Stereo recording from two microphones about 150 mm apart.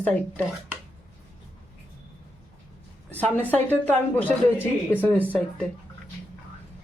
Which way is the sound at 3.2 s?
10° left (ahead or behind).